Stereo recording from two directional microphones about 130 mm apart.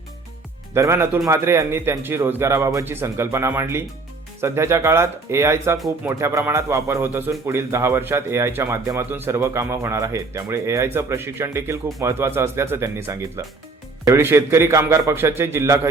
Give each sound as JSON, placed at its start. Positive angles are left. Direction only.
{"t": 0.7, "sound": "speech", "side_deg": -20}